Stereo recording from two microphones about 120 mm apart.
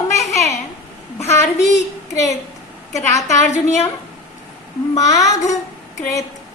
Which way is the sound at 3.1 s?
25° left (ahead or behind).